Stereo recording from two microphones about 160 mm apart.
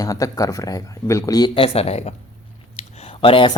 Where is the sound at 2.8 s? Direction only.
40° left (ahead or behind).